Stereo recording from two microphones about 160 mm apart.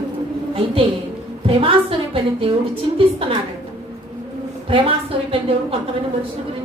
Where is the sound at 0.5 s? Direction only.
35° right (ahead or behind).